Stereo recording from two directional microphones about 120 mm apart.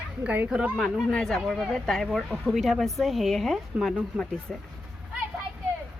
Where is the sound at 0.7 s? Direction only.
Centre (ahead or behind).